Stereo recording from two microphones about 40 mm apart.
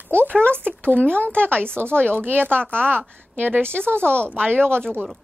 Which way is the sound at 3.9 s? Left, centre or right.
Right.